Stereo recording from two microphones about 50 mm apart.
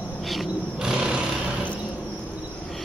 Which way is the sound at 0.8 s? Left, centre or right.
Centre.